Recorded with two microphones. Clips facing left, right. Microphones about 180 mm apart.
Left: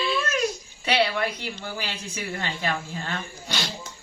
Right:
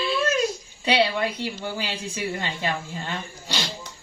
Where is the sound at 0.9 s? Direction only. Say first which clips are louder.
Right 1 dB; 15° right (ahead or behind).